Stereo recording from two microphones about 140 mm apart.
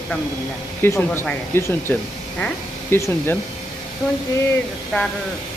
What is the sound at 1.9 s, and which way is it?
Speech, 5° left (ahead or behind).